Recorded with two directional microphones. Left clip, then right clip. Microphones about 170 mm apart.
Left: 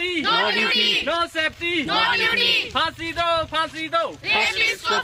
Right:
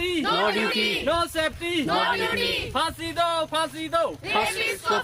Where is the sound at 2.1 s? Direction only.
5° left (ahead or behind).